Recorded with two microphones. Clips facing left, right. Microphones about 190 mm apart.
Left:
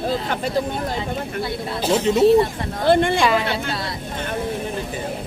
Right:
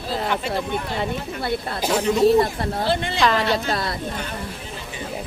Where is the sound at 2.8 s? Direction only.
55° left (ahead or behind).